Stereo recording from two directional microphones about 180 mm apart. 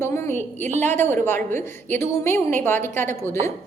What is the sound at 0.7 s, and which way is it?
Speech, 40° right (ahead or behind).